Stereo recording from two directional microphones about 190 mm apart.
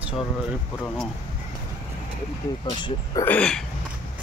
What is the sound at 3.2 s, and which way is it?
Speech, 5° left (ahead or behind).